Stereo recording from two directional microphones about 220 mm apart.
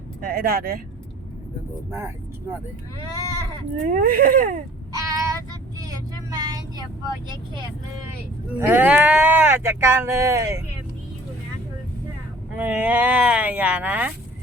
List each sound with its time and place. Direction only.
0.2 s speech: 45° right (ahead or behind)
1.9 s speech: 10° right (ahead or behind)
3.8 s speech: 35° right (ahead or behind)
4.9 s child singing: 15° right (ahead or behind)
8.5 s speech: 10° right (ahead or behind)
12.5 s speech: 5° right (ahead or behind)